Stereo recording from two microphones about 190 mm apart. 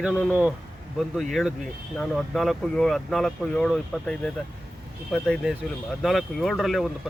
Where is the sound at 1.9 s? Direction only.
5° left (ahead or behind).